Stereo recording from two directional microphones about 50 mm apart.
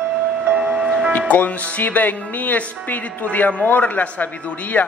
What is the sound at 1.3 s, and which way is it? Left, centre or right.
Speech, left.